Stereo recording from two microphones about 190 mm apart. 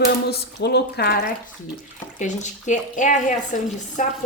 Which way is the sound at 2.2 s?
40° left (ahead or behind).